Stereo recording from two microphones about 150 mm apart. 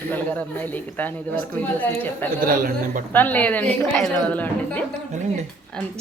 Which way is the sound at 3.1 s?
10° left (ahead or behind).